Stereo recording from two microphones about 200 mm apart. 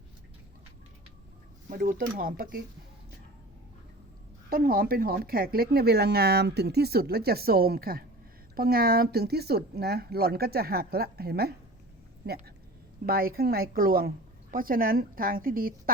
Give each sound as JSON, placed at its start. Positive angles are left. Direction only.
{"t": 1.7, "sound": "speech", "side_deg": -45}
{"t": 4.4, "sound": "speech", "side_deg": -45}
{"t": 13.1, "sound": "speech", "side_deg": -50}